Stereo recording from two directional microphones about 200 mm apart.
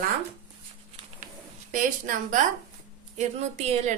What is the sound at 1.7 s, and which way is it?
A woman's voice, 40° right (ahead or behind).